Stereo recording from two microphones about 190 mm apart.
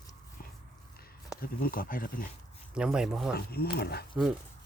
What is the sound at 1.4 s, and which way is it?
Speech, 50° left (ahead or behind).